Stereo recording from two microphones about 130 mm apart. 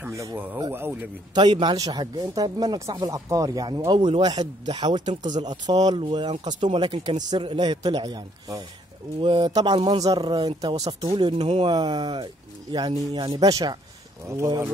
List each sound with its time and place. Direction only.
0.1 s speech: 25° right (ahead or behind)
1.3 s speech: 35° right (ahead or behind)